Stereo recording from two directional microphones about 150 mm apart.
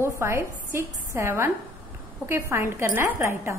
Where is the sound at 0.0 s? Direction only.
15° right (ahead or behind).